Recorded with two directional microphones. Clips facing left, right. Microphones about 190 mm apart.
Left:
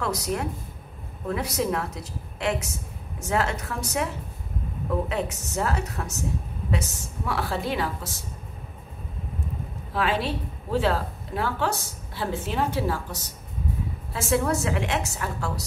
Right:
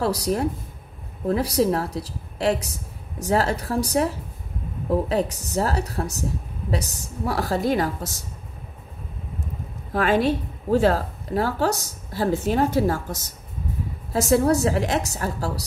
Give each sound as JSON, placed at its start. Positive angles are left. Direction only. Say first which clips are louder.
{"t": 0.0, "sound": "a woman's voice", "louder": "right 5 dB", "side_deg": -35}
{"t": 9.9, "sound": "a woman's voice", "louder": "right 6 dB", "side_deg": -45}